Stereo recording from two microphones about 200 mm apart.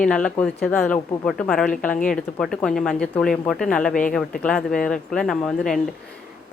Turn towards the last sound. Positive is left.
turn(degrees=0)  # may be behind; listen again after turning